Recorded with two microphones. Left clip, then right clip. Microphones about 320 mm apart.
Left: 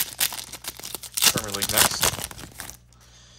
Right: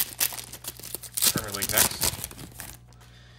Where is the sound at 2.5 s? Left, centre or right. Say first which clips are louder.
Left 4 dB; centre.